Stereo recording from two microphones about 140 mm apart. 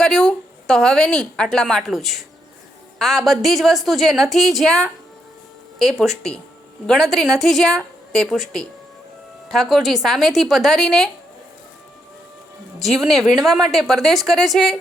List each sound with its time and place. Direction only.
0.0 s speech: 5° left (ahead or behind)
12.8 s speech: centre (ahead or behind)